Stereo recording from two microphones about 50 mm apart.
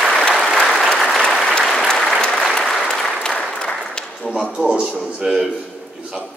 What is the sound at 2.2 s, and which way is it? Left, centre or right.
Applause, centre.